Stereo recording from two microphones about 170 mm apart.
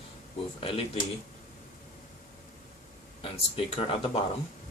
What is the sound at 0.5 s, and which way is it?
Speech, 35° left (ahead or behind).